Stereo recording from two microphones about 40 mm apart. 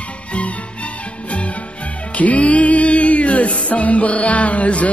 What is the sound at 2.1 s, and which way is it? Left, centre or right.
Music, left.